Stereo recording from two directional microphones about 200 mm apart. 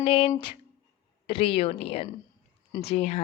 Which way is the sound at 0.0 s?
25° left (ahead or behind).